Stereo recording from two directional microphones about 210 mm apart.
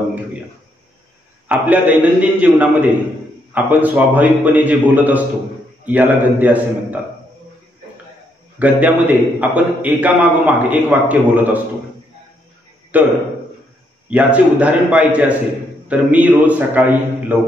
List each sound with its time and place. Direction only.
1.5 s a man's voice: 5° right (ahead or behind)
8.5 s a man's voice: 5° right (ahead or behind)
12.9 s a man's voice: 5° right (ahead or behind)
14.1 s a man's voice: 5° right (ahead or behind)